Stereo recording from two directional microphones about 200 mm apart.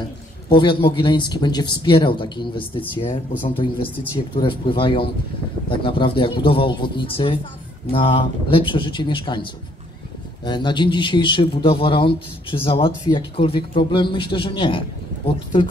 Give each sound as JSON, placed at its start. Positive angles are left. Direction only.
{"t": 0.5, "sound": "speech", "side_deg": 25}